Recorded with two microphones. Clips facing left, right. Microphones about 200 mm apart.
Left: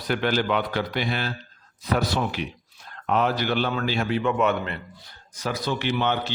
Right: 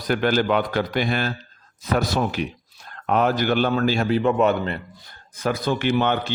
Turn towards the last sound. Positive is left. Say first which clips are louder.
# right 4 dB
turn(degrees=-50)  # may be behind; listen again after turning